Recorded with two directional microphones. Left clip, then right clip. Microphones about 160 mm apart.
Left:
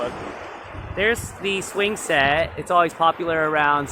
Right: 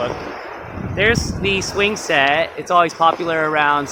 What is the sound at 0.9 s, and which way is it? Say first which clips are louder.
Speech: right 5 dB; 5° right (ahead or behind).